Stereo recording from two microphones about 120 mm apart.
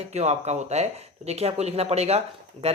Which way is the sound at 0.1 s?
65° right (ahead or behind).